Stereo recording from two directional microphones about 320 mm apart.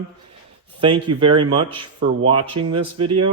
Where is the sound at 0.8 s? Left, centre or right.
Centre.